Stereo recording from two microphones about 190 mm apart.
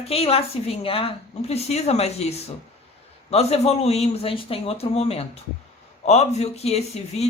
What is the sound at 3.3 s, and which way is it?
Speech, 35° left (ahead or behind).